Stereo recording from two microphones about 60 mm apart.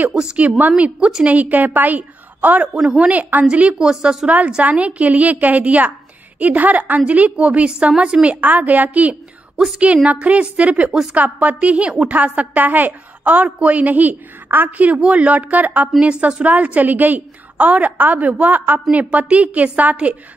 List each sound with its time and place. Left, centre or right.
0.1 s a woman's voice: centre
1.2 s a woman's voice: right
2.7 s a woman's voice: centre
3.1 s a woman's voice: right
3.4 s a woman's voice: centre
4.6 s a woman's voice: right